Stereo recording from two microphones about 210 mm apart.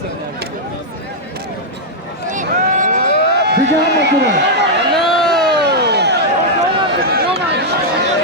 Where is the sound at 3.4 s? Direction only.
50° right (ahead or behind).